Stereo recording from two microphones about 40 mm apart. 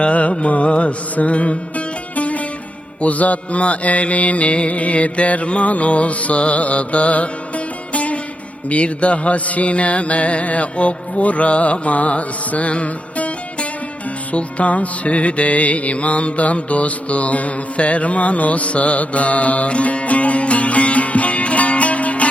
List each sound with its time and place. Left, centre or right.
0.0 s music: left